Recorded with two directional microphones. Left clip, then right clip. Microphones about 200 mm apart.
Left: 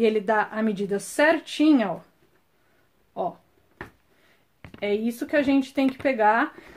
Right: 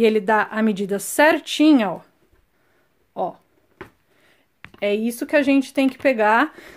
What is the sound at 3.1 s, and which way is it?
Speech, 25° right (ahead or behind).